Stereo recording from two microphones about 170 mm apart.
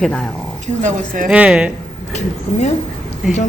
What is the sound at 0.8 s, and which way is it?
Speech, 50° right (ahead or behind).